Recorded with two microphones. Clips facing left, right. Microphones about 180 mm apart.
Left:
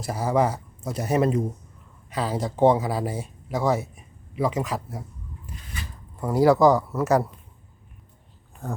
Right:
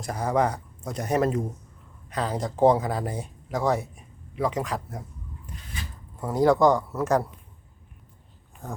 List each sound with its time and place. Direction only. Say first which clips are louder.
0.0 s speech: left 2 dB; 5° left (ahead or behind)
6.1 s speech: left 2 dB; 5° left (ahead or behind)